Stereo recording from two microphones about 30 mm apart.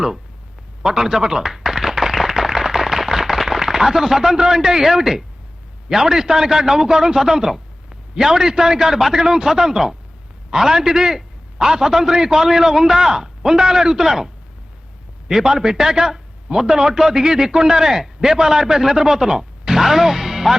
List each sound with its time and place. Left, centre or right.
0.8 s a sound: right
3.6 s a man's voice: centre
15.3 s a man's voice: centre